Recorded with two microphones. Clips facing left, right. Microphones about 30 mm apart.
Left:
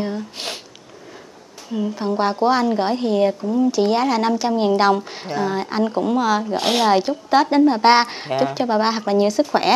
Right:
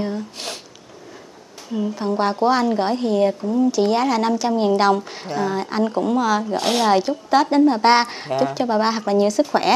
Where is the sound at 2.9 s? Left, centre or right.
Centre.